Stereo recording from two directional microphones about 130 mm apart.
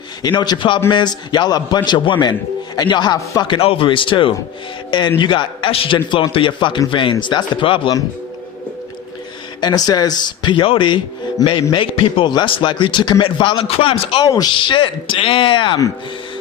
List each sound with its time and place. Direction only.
0.2 s a man's voice: 30° left (ahead or behind)
9.6 s a man's voice: 30° left (ahead or behind)
14.3 s a man's voice: 30° left (ahead or behind)